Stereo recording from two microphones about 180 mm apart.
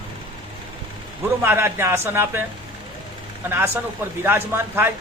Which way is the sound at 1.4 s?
15° right (ahead or behind).